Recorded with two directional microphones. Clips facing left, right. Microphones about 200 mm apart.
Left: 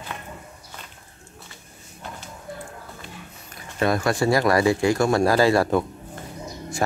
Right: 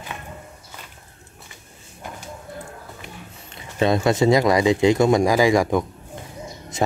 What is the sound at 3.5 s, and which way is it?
Speech, 20° right (ahead or behind).